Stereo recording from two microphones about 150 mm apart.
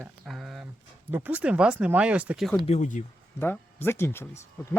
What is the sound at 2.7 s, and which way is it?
Speech, 50° left (ahead or behind).